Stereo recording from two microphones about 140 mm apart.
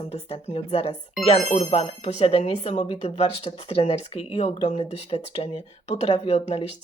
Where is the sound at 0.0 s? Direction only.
50° left (ahead or behind).